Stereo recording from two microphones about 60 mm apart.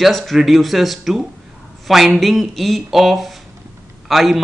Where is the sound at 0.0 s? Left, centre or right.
Centre.